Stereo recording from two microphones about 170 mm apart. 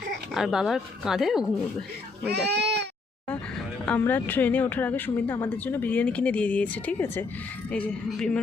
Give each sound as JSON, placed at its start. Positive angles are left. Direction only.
{"t": 0.3, "sound": "speech", "side_deg": 0}
{"t": 2.3, "sound": "speech", "side_deg": -75}
{"t": 3.8, "sound": "a woman's voice", "side_deg": 10}